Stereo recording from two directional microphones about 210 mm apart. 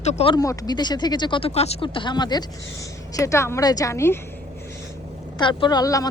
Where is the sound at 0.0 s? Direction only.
30° left (ahead or behind); by 4.2 s 15° left (ahead or behind).